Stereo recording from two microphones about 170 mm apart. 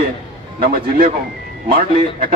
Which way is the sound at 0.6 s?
60° right (ahead or behind).